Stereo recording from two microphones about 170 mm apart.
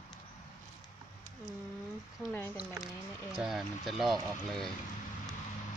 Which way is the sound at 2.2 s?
15° left (ahead or behind).